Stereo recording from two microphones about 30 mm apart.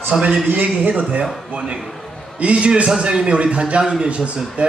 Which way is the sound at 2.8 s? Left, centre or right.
Right.